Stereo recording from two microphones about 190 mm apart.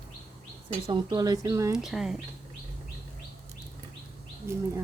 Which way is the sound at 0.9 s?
25° right (ahead or behind).